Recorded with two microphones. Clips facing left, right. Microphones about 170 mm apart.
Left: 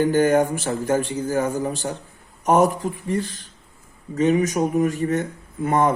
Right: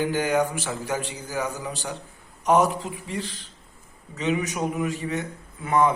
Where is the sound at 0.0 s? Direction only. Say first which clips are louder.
Left 6 dB; 50° left (ahead or behind).